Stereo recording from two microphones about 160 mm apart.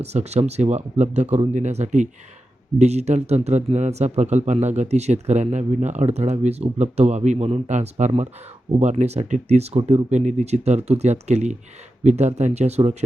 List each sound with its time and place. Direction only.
0.0 s speech: 40° right (ahead or behind)